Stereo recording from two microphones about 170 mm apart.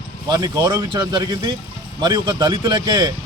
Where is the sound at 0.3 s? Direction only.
20° right (ahead or behind).